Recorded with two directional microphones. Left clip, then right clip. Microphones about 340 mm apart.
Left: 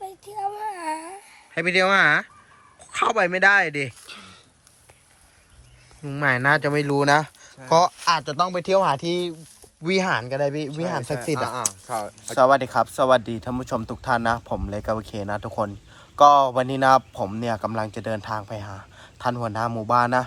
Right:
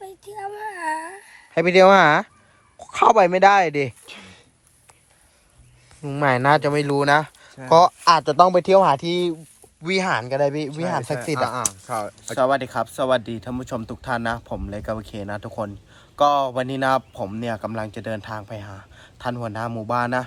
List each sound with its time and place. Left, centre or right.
0.0 s child singing: centre
1.5 s speech: centre
4.1 s a sound: right
6.0 s speech: centre
11.5 s speech: right
12.3 s speech: centre